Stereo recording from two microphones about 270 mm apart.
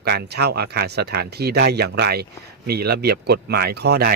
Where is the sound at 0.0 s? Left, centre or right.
Right.